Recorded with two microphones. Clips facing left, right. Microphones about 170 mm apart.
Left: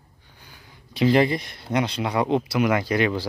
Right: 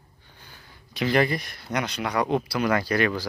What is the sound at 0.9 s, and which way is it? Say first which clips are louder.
Speech: left 4 dB; 25° left (ahead or behind).